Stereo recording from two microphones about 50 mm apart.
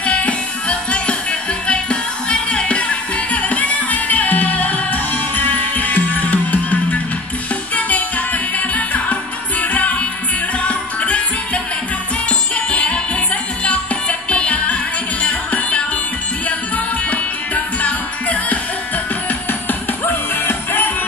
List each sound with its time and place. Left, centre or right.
0.0 s music: left
20.1 s music: left